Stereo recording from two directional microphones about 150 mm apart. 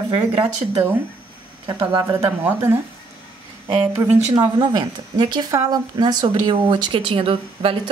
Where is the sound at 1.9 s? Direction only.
25° right (ahead or behind).